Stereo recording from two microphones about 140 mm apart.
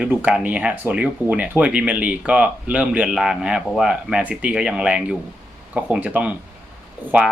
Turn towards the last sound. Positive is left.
turn(degrees=-15)  # may be behind; listen again after turning